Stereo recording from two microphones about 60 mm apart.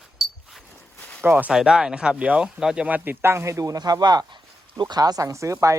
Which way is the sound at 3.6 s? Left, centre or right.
Right.